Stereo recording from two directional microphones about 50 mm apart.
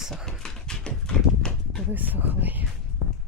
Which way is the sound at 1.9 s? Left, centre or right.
Right.